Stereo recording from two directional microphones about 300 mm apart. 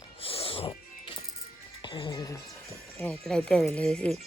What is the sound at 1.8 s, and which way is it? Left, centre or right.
Speech, centre.